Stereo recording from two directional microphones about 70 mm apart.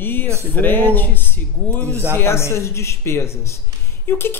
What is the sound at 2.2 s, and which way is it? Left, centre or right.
A woman's voice, left.